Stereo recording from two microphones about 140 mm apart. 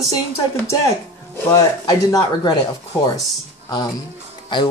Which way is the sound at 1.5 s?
25° left (ahead or behind).